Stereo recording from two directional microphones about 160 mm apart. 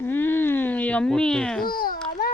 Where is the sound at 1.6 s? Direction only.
65° left (ahead or behind).